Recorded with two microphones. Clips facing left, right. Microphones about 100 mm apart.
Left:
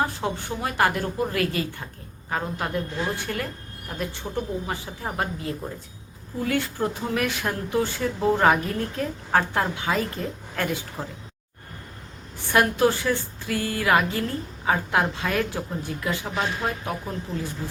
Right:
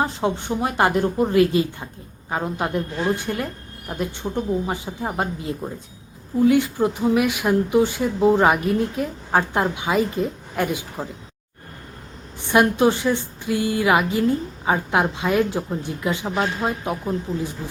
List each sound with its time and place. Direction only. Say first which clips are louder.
0.0 s a woman's voice: right 4 dB; 20° right (ahead or behind)
12.4 s a woman's voice: right 3 dB; 20° right (ahead or behind)